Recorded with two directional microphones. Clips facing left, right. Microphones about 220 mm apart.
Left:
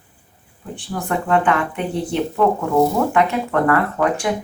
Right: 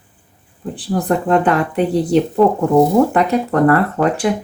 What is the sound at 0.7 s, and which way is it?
Speech, 35° right (ahead or behind).